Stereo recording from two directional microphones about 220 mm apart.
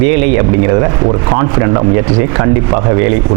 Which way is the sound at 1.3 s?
20° right (ahead or behind).